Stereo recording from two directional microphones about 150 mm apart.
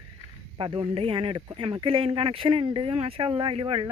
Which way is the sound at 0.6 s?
35° right (ahead or behind).